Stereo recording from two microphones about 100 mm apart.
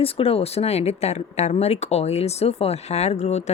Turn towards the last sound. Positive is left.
turn(degrees=90)